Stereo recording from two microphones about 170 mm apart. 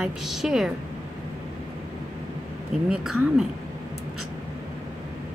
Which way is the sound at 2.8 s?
5° right (ahead or behind).